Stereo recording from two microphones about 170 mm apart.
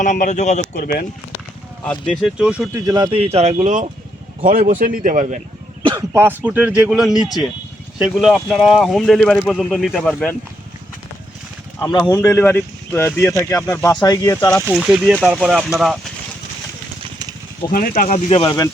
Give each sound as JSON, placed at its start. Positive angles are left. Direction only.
{"t": 0.0, "sound": "speech", "side_deg": 45}
{"t": 2.0, "sound": "speech", "side_deg": -5}
{"t": 2.7, "sound": "speech", "side_deg": -20}
{"t": 5.8, "sound": "a sound", "side_deg": -30}
{"t": 6.1, "sound": "speech", "side_deg": -10}
{"t": 11.9, "sound": "speech", "side_deg": 25}
{"t": 14.0, "sound": "speech", "side_deg": 20}
{"t": 14.7, "sound": "speech", "side_deg": -5}
{"t": 17.7, "sound": "speech", "side_deg": 55}